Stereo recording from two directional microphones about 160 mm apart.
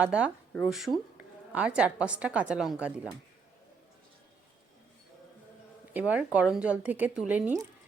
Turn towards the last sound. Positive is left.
turn(degrees=-10)  # may be behind; listen again after turning